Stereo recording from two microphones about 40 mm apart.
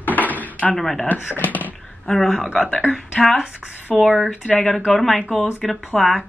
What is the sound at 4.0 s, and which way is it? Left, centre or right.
Speech, centre.